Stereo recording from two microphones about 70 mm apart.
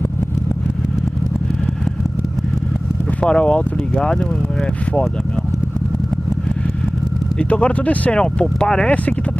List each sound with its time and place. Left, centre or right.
3.2 s speech: centre
7.3 s speech: centre